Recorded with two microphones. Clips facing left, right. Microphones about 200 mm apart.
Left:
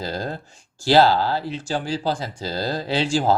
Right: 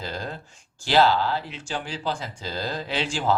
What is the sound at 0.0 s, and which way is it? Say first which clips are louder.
Speech: left 5 dB; 35° left (ahead or behind).